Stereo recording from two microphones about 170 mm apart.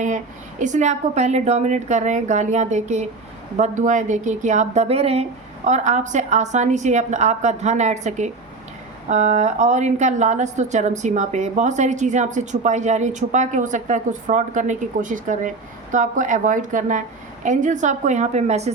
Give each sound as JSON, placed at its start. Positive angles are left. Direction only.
{"t": 0.6, "sound": "a woman's voice", "side_deg": -45}